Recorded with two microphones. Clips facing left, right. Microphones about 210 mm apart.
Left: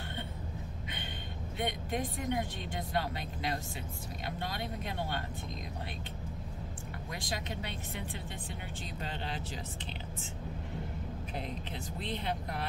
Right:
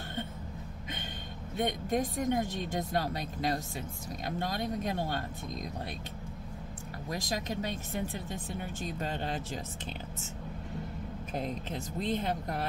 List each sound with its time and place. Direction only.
1.6 s speech: 45° right (ahead or behind)
7.1 s speech: 40° right (ahead or behind)
11.3 s speech: 45° right (ahead or behind)